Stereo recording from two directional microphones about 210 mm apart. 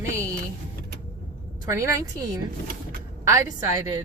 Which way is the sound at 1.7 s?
15° right (ahead or behind).